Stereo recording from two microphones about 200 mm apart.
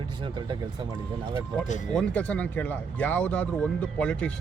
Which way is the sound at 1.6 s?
35° left (ahead or behind).